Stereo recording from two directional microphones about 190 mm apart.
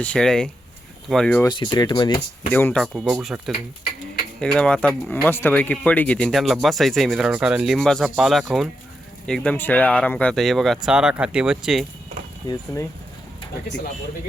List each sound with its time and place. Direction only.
0.0 s speech: 5° left (ahead or behind)
1.5 s speech: 25° left (ahead or behind)
2.5 s speech: 10° left (ahead or behind)
2.8 s speech: centre (ahead or behind)